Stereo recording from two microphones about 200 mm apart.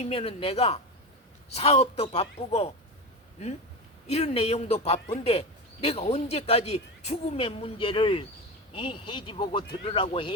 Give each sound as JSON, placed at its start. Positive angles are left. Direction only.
{"t": 0.0, "sound": "speech", "side_deg": 30}
{"t": 4.0, "sound": "speech", "side_deg": 30}